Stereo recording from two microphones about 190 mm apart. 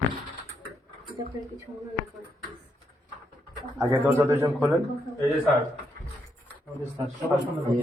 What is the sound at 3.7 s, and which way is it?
Speech, 15° right (ahead or behind).